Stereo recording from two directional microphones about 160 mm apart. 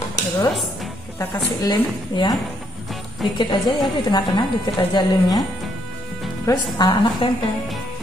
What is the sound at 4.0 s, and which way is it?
Speech, 25° left (ahead or behind).